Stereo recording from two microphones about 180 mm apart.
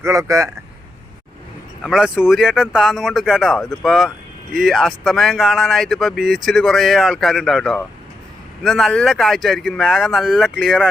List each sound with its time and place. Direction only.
0.0 s a man's voice: 20° right (ahead or behind)
1.8 s speech: 5° right (ahead or behind)